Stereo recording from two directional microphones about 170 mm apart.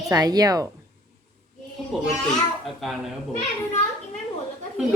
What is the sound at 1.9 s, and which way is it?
Speech, centre (ahead or behind).